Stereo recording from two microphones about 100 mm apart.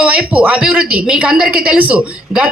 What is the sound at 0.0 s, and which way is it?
A woman's voice, 15° right (ahead or behind).